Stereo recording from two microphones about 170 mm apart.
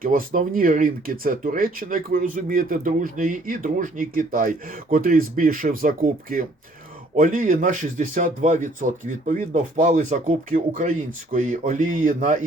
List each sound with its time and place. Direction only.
0.0 s speech: 55° right (ahead or behind)